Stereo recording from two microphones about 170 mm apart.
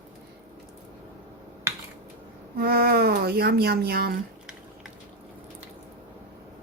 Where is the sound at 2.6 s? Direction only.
65° right (ahead or behind).